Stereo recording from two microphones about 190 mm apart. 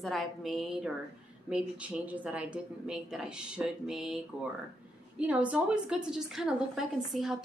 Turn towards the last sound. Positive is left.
turn(degrees=0)  # may be behind; listen again after turning